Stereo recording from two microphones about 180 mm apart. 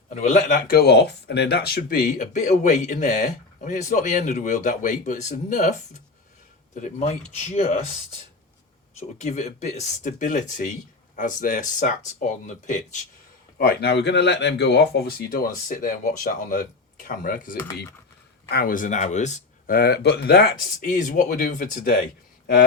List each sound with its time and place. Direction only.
0.1 s a man's voice: 40° left (ahead or behind)
0.8 s speech: 65° left (ahead or behind); by 7.8 s 40° left (ahead or behind)
9.0 s speech: 40° left (ahead or behind)
13.6 s speech: 65° left (ahead or behind)
20.8 s speech: 45° left (ahead or behind)